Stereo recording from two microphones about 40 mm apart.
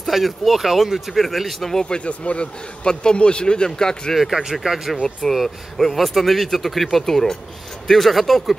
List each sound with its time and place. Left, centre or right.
0.0 s speech: centre
1.7 s speech: centre
2.0 s a man's voice: left
4.1 s speech: centre
5.3 s speech: centre